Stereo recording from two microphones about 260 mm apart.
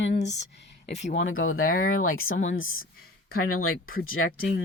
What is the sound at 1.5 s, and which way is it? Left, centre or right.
Speech, left.